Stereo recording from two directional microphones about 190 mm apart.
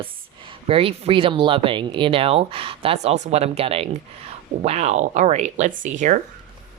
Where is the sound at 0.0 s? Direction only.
30° right (ahead or behind).